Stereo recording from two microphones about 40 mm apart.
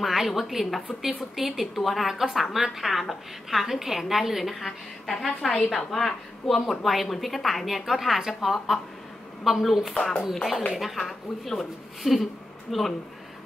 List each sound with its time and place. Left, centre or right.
0.0 s a woman's voice: centre